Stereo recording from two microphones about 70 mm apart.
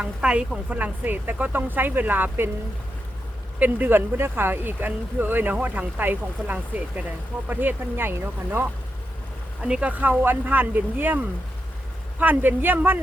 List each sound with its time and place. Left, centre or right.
0.0 s speech: centre
3.6 s speech: right
9.6 s speech: centre
10.0 s speech: right
12.2 s speech: right